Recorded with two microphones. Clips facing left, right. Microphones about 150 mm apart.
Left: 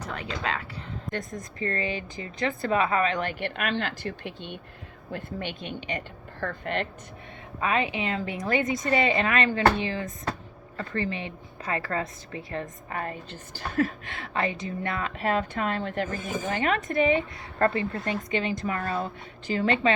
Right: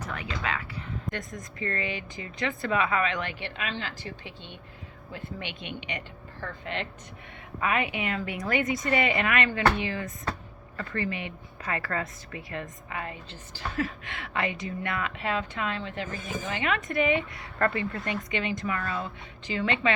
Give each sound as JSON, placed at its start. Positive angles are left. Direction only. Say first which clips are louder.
{"t": 0.1, "sound": "speech", "louder": "left 2 dB", "side_deg": 35}
{"t": 1.1, "sound": "a woman's voice", "louder": "left 3 dB", "side_deg": 0}
{"t": 1.5, "sound": "speech", "louder": "left 3 dB", "side_deg": 35}
{"t": 5.1, "sound": "a woman's voice", "louder": "left 4 dB", "side_deg": 45}
{"t": 7.6, "sound": "a woman's voice", "louder": "left 2 dB", "side_deg": 25}
{"t": 12.9, "sound": "a woman's voice", "louder": "left 4 dB", "side_deg": 45}
{"t": 15.2, "sound": "a woman's voice", "louder": "left 7 dB", "side_deg": 45}